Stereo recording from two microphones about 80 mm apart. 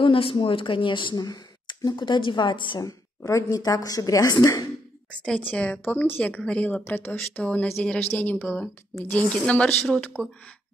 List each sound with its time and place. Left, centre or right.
0.0 s speech: left
1.2 s speech: left
3.3 s speech: left
5.4 s a woman's voice: centre
6.9 s a woman's voice: left
7.8 s a woman's voice: centre
10.1 s a woman's voice: left